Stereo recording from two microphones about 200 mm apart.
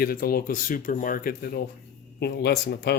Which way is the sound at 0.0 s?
50° left (ahead or behind).